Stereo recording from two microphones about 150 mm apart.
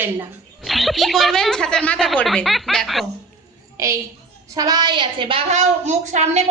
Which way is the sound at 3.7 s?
20° right (ahead or behind).